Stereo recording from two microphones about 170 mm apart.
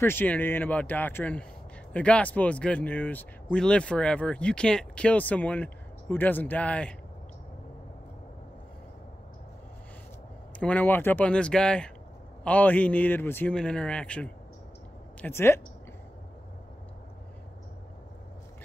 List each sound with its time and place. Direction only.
0.0 s speech: 10° left (ahead or behind)
10.6 s speech: 10° left (ahead or behind)